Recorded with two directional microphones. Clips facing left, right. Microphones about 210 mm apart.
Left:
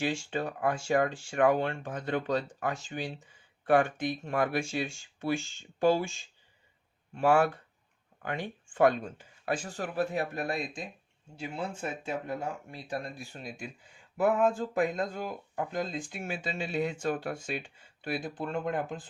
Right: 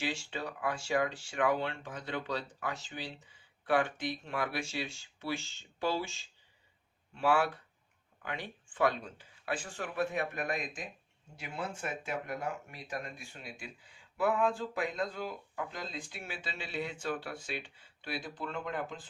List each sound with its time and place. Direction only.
0.0 s speech: 50° left (ahead or behind)